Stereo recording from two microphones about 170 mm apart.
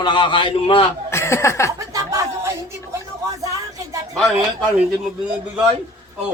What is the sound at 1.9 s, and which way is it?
Chatter, 20° right (ahead or behind).